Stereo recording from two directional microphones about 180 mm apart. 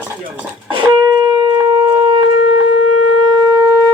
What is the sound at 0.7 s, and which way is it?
Shofar, 25° right (ahead or behind).